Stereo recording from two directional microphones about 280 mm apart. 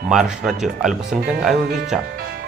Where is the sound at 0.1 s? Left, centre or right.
Centre.